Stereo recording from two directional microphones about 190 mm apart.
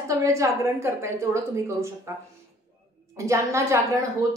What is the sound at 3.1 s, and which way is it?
Speech, 15° right (ahead or behind).